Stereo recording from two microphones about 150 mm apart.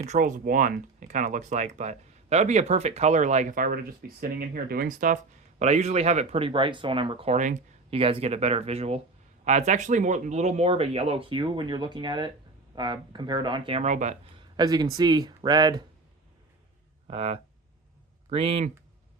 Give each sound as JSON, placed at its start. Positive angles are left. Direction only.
{"t": 0.0, "sound": "speech", "side_deg": -55}
{"t": 7.3, "sound": "speech", "side_deg": -60}
{"t": 7.9, "sound": "speech", "side_deg": -40}
{"t": 13.8, "sound": "speech", "side_deg": -50}
{"t": 14.3, "sound": "speech", "side_deg": -30}
{"t": 17.1, "sound": "speech", "side_deg": -40}